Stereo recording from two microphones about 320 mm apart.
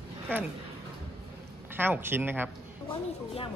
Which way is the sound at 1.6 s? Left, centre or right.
Centre.